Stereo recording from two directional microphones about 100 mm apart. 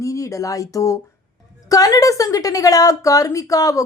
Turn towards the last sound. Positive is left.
turn(degrees=35)  # may be behind; listen again after turning